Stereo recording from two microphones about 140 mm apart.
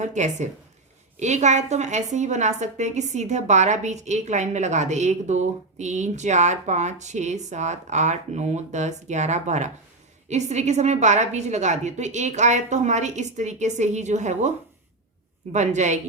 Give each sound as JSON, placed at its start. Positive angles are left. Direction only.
{"t": 0.0, "sound": "a woman's voice", "side_deg": -60}
{"t": 15.5, "sound": "a woman's voice", "side_deg": -55}